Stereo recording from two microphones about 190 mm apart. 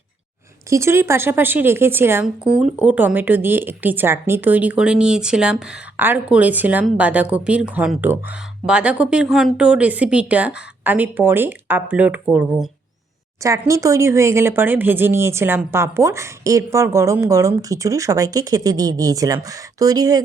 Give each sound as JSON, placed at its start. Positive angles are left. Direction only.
{"t": 0.7, "sound": "speech", "side_deg": -15}
{"t": 13.4, "sound": "speech", "side_deg": -15}